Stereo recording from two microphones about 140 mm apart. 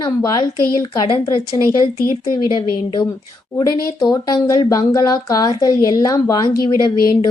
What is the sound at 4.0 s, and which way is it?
Speech, 30° left (ahead or behind).